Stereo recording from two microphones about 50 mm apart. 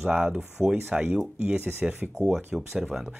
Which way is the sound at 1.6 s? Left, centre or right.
Right.